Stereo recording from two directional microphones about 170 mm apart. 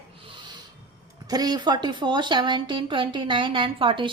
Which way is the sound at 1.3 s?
25° right (ahead or behind).